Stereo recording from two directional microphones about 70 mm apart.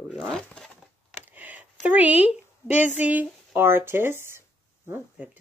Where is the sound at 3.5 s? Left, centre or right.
Right.